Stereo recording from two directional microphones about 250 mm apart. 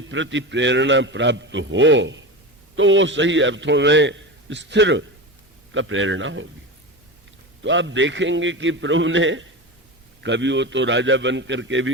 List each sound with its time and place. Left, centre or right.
0.1 s a man's voice: right
7.6 s a man's voice: right